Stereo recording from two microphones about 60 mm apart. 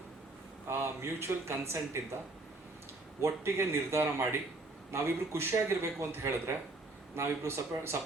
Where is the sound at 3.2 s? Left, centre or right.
Right.